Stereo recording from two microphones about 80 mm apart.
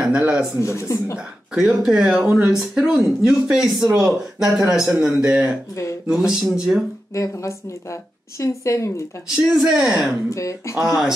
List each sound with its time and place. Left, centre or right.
0.0 s speech: centre
0.6 s speech: left
1.5 s speech: centre
8.4 s speech: left
9.3 s speech: centre
10.3 s speech: left
10.8 s speech: centre